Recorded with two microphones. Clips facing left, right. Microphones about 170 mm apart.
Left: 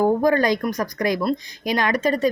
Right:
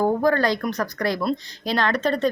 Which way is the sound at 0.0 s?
15° left (ahead or behind).